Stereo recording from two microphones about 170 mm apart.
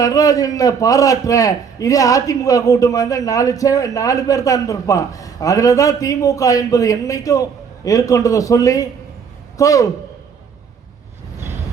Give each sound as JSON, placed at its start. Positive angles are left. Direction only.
{"t": 0.0, "sound": "a man's voice", "side_deg": 20}